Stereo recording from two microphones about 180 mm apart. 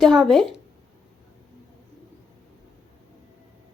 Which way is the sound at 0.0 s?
Centre (ahead or behind).